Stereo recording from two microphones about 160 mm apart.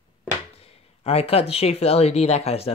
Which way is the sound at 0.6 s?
40° left (ahead or behind).